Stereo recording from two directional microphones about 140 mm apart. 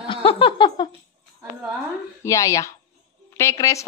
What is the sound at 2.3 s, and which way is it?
A woman's voice, 20° left (ahead or behind).